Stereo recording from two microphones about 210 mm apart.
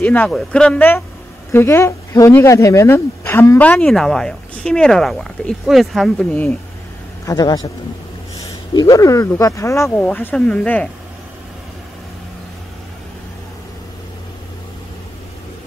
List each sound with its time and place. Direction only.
0.0 s speech: 5° left (ahead or behind)
7.2 s speech: 20° left (ahead or behind)